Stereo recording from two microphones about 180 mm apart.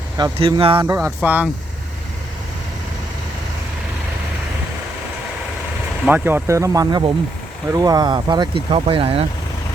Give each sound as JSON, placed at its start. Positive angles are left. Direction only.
{"t": 0.2, "sound": "speech", "side_deg": -25}
{"t": 0.9, "sound": "speech", "side_deg": -15}
{"t": 6.1, "sound": "speech", "side_deg": -10}